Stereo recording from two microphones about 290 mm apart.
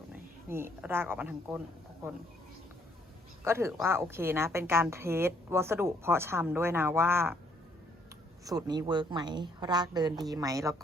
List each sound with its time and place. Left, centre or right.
0.1 s speech: centre
3.4 s a woman's voice: centre
8.4 s a woman's voice: centre